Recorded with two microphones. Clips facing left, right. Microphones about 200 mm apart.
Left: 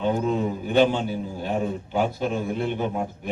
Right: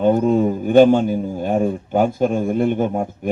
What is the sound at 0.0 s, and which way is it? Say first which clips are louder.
A man's voice: right 8 dB; 50° right (ahead or behind).